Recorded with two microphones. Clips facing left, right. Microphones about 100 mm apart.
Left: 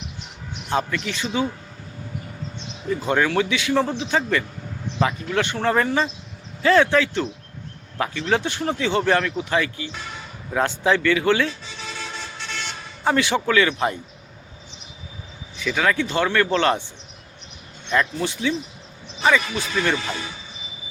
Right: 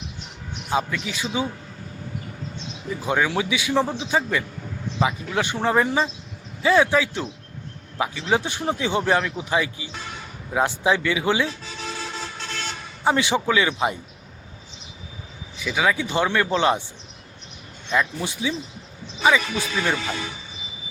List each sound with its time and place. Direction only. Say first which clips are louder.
0.7 s speech: left 1 dB; 5° right (ahead or behind)
2.9 s speech: left 2 dB; 10° right (ahead or behind)
12.5 s vehicle: left 1 dB; 45° right (ahead or behind)
13.1 s speech: even; 15° right (ahead or behind)
15.5 s speech: left 1 dB; 10° right (ahead or behind)
17.9 s speech: left 2 dB; 10° right (ahead or behind)